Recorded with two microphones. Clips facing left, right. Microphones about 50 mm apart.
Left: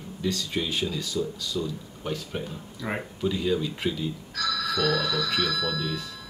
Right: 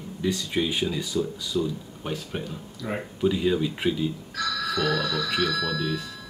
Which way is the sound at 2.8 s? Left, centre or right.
Centre.